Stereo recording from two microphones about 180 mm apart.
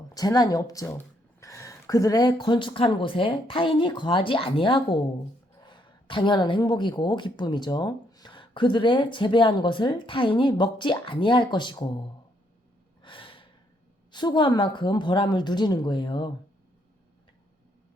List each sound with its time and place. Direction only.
0.1 s speech: 20° left (ahead or behind)
13.0 s gasp: 30° left (ahead or behind)
14.1 s speech: 25° left (ahead or behind)